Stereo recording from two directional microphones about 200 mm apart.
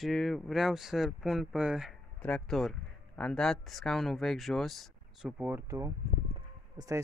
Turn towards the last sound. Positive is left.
turn(degrees=-20)  # may be behind; listen again after turning